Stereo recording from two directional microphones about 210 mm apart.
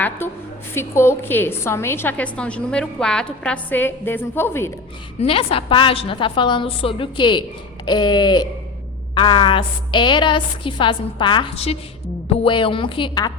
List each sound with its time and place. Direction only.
0.2 s a woman's voice: 10° left (ahead or behind)
5.2 s a woman's voice: 25° left (ahead or behind)